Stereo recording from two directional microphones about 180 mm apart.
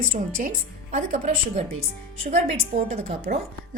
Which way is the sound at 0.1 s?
45° right (ahead or behind).